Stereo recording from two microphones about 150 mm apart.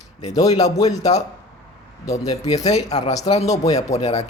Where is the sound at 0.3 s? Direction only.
25° left (ahead or behind).